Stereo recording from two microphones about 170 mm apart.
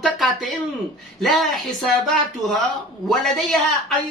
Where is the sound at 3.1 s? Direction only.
5° left (ahead or behind).